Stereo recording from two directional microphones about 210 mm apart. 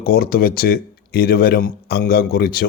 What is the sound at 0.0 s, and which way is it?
A man's voice, 45° left (ahead or behind).